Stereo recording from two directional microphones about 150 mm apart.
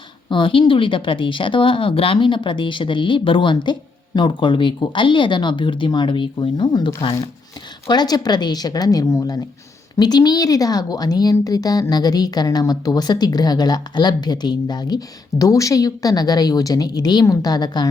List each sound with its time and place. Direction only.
0.3 s a woman's voice: 35° left (ahead or behind)